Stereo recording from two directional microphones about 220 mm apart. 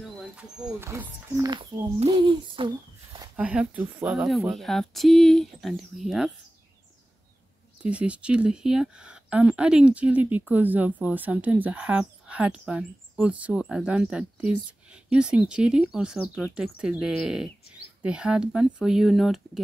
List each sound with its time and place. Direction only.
0.4 s speech: 10° right (ahead or behind)
3.3 s speech: 5° right (ahead or behind)
7.8 s speech: 5° right (ahead or behind)